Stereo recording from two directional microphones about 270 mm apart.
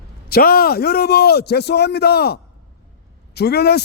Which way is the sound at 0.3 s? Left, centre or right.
Left.